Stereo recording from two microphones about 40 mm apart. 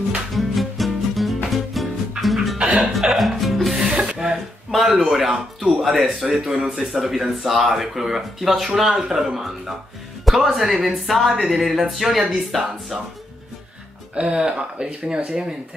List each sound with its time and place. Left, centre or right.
0.3 s music: centre
3.7 s music: right
4.6 s speech: centre
14.1 s speech: right